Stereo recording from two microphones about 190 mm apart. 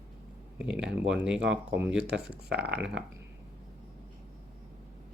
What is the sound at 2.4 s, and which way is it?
Speech, 60° right (ahead or behind).